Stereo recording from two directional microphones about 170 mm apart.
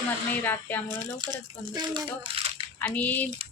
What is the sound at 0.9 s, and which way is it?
Speech, 25° right (ahead or behind).